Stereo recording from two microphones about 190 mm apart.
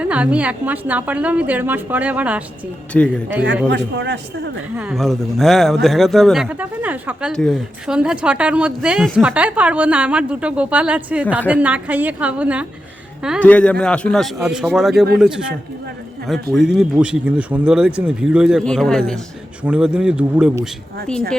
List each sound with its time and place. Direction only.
0.0 s speech: 5° right (ahead or behind)
2.9 s speech: 5° left (ahead or behind)
3.7 s a man's voice: 65° right (ahead or behind)
4.8 s speech: centre (ahead or behind)
13.4 s speech: 5° left (ahead or behind)